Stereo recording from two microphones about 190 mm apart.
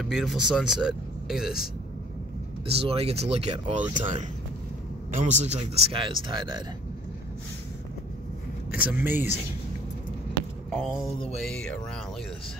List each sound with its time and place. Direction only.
0.0 s speech: centre (ahead or behind)
2.6 s speech: 30° right (ahead or behind)
8.7 s speech: 10° right (ahead or behind)
10.7 s speech: 5° left (ahead or behind)